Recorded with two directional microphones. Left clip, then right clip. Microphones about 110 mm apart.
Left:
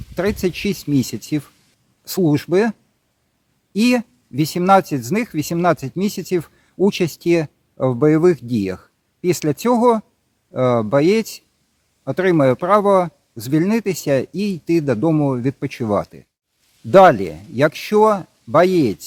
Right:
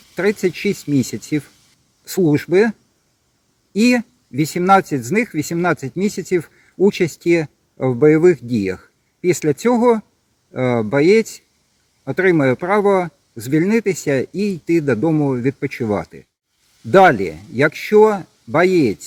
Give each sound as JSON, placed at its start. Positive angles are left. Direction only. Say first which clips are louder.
{"t": 0.2, "sound": "speech", "louder": "right 2 dB", "side_deg": 20}
{"t": 15.1, "sound": "speech", "louder": "right 1 dB", "side_deg": 30}